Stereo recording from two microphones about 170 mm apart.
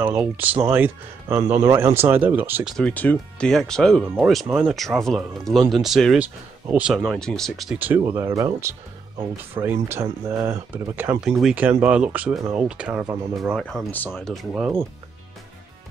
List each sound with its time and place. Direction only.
0.0 s speech: 10° right (ahead or behind)
2.8 s speech: 10° left (ahead or behind)
7.8 s speech: 15° right (ahead or behind); by 14.4 s 5° left (ahead or behind)
14.5 s speech: 15° right (ahead or behind)